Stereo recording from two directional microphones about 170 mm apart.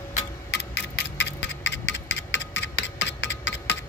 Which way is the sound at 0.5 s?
90° left.